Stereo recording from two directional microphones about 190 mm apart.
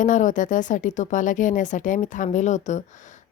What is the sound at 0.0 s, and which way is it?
A woman's voice, 40° left (ahead or behind).